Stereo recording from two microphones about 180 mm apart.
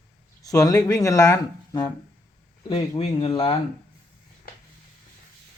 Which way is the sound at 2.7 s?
35° left (ahead or behind).